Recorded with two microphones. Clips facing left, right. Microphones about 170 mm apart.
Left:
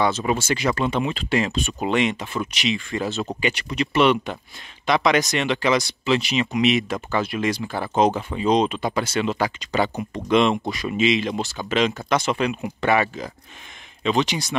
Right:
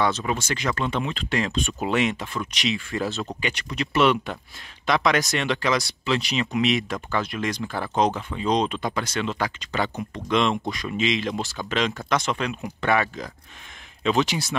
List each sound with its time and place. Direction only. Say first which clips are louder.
0.4 s speech: left 4 dB; 10° left (ahead or behind)
8.1 s speech: left 4 dB; 25° left (ahead or behind)
8.4 s speech: left 3 dB; 5° left (ahead or behind)